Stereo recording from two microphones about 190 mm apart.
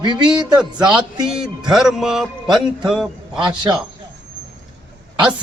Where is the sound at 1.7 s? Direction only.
5° right (ahead or behind).